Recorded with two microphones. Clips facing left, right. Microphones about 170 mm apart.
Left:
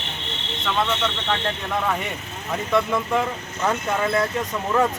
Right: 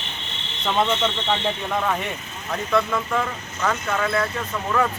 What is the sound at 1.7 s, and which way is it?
Speech, centre (ahead or behind).